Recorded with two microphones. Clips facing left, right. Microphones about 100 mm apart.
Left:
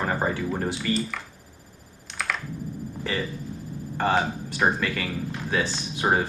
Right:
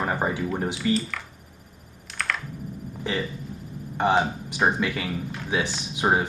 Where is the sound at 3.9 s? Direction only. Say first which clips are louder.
Right 2 dB; 15° right (ahead or behind).